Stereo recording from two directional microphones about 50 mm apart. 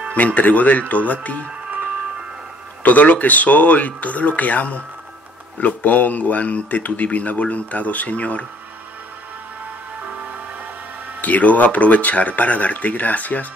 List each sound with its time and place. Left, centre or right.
0.1 s speech: left
2.8 s speech: left
11.1 s speech: left